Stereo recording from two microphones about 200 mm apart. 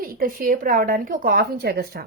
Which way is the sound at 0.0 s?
45° right (ahead or behind).